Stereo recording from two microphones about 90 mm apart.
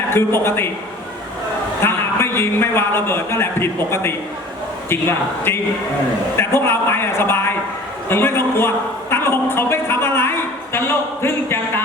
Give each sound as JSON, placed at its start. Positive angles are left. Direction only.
{"t": 0.1, "sound": "a man's voice", "side_deg": 25}
{"t": 1.8, "sound": "a man's voice", "side_deg": 25}
{"t": 8.1, "sound": "a sound", "side_deg": 25}